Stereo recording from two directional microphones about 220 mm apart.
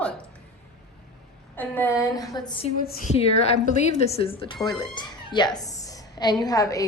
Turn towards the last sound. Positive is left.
turn(degrees=15)  # may be behind; listen again after turning